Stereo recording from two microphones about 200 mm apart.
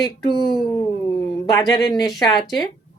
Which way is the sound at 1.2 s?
20° left (ahead or behind).